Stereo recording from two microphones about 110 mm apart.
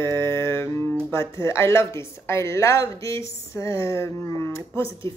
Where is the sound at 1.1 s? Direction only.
25° left (ahead or behind).